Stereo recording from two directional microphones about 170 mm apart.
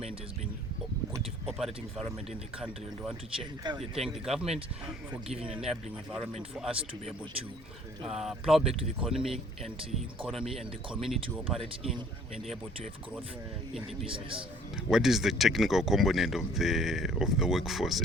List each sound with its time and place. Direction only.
1.5 s speech: centre (ahead or behind)
3.3 s speech: 25° right (ahead or behind)
3.8 s speech: centre (ahead or behind)
8.0 s speech: centre (ahead or behind)
14.1 s a man's voice: 30° right (ahead or behind)
14.8 s speech: 5° right (ahead or behind)